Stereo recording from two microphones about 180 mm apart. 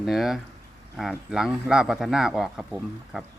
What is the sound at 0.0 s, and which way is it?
A man's voice, centre (ahead or behind).